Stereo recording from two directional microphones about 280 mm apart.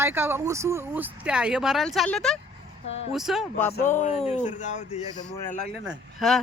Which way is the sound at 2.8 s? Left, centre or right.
Left.